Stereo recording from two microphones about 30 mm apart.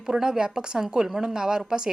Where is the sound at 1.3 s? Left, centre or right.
Right.